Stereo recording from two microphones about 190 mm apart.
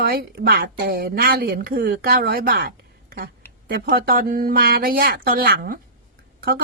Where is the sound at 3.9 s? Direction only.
50° right (ahead or behind).